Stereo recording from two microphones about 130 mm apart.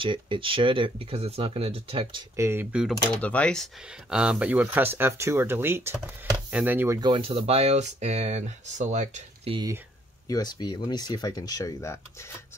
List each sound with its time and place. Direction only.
0.0 s speech: 40° right (ahead or behind)
2.3 s speech: 20° right (ahead or behind)
2.7 s speech: 5° right (ahead or behind)
3.1 s speech: 10° left (ahead or behind); by 7.0 s 15° right (ahead or behind)
7.0 s speech: 40° right (ahead or behind); by 9.5 s 65° right (ahead or behind)
10.2 s speech: 30° left (ahead or behind)